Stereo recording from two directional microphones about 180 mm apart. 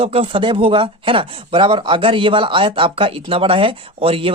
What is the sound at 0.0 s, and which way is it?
Speech, 30° right (ahead or behind).